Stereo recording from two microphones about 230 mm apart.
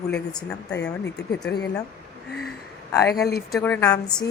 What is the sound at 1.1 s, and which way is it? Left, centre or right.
Speech, left.